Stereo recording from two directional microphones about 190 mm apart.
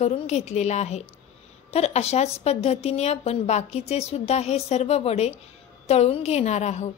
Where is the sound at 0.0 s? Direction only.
35° left (ahead or behind).